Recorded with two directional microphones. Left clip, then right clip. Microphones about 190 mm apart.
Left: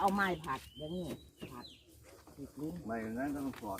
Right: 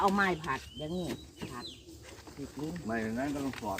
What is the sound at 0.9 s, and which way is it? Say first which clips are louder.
Speech: right 5 dB; 15° right (ahead or behind).